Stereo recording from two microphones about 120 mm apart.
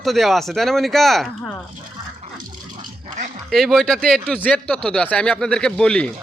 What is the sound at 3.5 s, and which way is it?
Speech, centre (ahead or behind).